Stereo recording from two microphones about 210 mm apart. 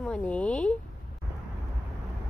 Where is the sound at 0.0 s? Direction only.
5° left (ahead or behind).